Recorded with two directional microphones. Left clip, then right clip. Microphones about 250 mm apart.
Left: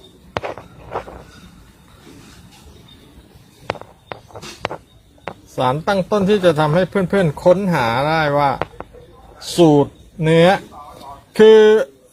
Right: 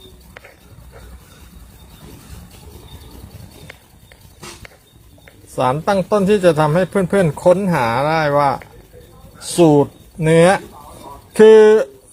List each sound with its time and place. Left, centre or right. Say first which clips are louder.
5.5 s speech: right 1 dB; centre